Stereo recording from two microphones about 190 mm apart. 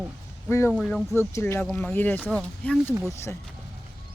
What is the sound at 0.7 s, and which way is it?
Speech, 5° left (ahead or behind).